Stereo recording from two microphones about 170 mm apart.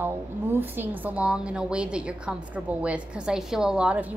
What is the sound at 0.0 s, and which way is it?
A woman's voice, 10° right (ahead or behind).